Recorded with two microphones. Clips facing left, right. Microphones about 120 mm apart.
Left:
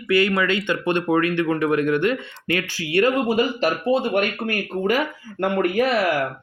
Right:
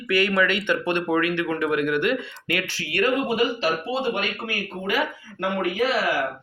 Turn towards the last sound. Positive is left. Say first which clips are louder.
# left 4 dB
turn(degrees=55)  # may be behind; listen again after turning